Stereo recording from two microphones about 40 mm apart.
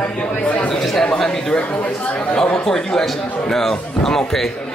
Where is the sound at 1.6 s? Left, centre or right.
Left.